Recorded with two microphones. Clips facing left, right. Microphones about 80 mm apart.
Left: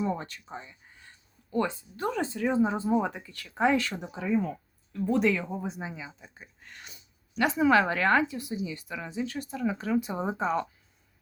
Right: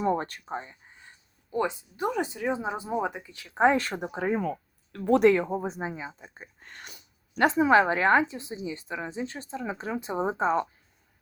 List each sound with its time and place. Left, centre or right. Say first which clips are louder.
0.0 s speech: right 4 dB; right
0.9 s speech: right 1 dB; right
3.6 s speech: right 3 dB; right
4.4 s speech: left 1 dB; right
5.5 s speech: right 4 dB; right
7.4 s a woman's voice: right 2 dB; right